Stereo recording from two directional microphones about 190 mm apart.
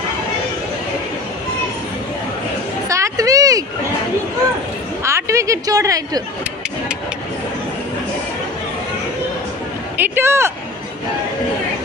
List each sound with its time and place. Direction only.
2.9 s a sound: 15° right (ahead or behind)
5.0 s a woman's voice: 15° right (ahead or behind)
9.9 s speech: 10° right (ahead or behind)